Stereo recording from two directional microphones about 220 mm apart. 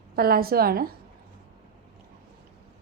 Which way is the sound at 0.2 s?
45° right (ahead or behind).